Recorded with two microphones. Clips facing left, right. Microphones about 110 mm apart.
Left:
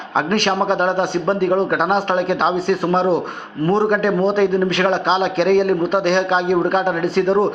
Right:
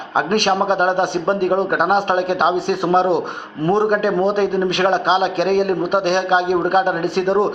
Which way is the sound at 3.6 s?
20° right (ahead or behind).